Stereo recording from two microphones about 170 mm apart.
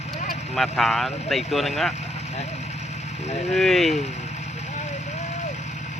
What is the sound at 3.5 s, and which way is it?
Speech, centre (ahead or behind).